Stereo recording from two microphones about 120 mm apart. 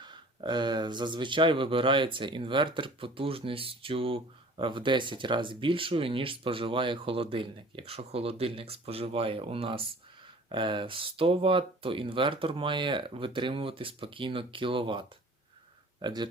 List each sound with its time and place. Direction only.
0.0 s speech: 40° right (ahead or behind)